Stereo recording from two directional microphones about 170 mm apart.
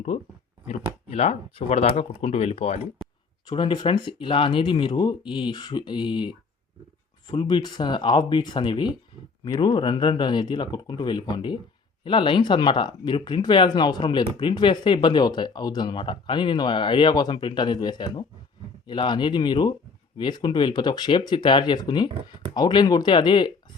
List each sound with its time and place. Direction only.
1.1 s speech: 40° left (ahead or behind)
3.4 s speech: 30° left (ahead or behind)